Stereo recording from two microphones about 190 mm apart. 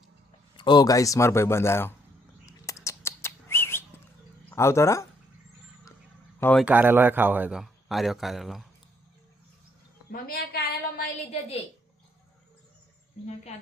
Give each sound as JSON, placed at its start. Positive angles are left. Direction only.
{"t": 0.5, "sound": "a man's voice", "side_deg": 25}
{"t": 2.5, "sound": "bird", "side_deg": 15}
{"t": 4.4, "sound": "speech", "side_deg": 15}
{"t": 6.4, "sound": "speech", "side_deg": 5}
{"t": 6.7, "sound": "a man's voice", "side_deg": -10}
{"t": 10.1, "sound": "a woman's voice", "side_deg": 50}